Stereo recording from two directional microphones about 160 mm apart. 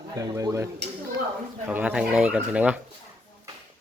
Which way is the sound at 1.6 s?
10° right (ahead or behind).